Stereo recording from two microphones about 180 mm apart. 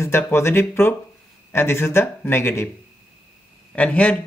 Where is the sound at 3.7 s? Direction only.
10° left (ahead or behind).